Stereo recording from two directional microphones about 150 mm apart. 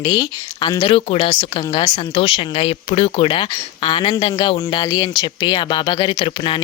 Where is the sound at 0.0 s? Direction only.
30° left (ahead or behind).